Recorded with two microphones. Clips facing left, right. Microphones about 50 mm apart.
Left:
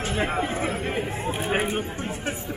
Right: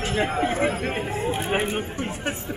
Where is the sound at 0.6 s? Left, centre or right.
Right.